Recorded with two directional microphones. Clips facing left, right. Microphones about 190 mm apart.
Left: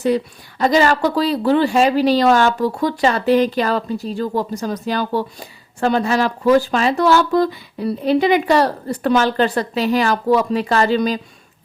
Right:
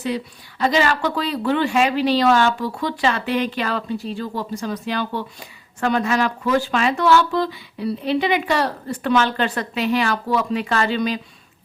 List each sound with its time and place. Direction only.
0.6 s speech: 40° left (ahead or behind)